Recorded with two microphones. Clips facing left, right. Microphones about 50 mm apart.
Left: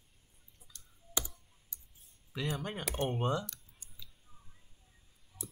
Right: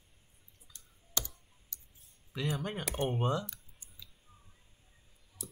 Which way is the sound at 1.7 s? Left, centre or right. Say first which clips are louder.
Right 2 dB; centre.